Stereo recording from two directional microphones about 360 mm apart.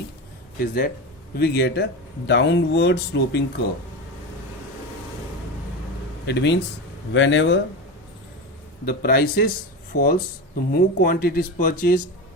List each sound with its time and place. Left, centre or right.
0.6 s speech: left
6.2 s speech: left
8.8 s speech: left